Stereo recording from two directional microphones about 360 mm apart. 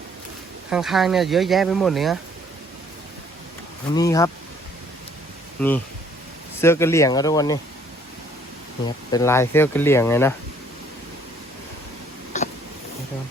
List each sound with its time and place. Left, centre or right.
0.7 s speech: centre
3.9 s speech: centre
5.5 s speech: centre
9.1 s speech: centre
12.3 s a sound: centre